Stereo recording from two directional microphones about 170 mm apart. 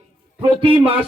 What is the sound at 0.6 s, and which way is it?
Speech, 30° right (ahead or behind).